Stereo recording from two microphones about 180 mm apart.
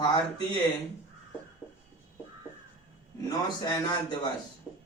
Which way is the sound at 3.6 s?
20° left (ahead or behind).